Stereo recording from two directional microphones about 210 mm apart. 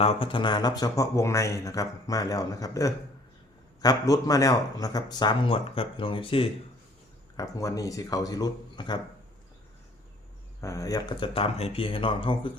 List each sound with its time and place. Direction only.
0.0 s speech: 25° left (ahead or behind)
10.6 s speech: 15° left (ahead or behind)